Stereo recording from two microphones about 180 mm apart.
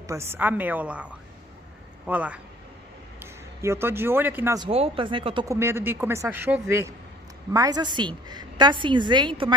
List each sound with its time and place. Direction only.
0.0 s speech: 15° right (ahead or behind)
3.6 s speech: 15° right (ahead or behind)
4.6 s a woman's voice: 30° right (ahead or behind)
5.5 s a woman's voice: 15° right (ahead or behind)